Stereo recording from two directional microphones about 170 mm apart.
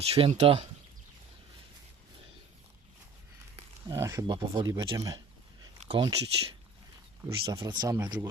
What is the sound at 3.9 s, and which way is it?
Speech, 15° right (ahead or behind).